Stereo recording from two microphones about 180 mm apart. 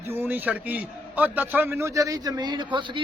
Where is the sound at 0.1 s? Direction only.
10° right (ahead or behind).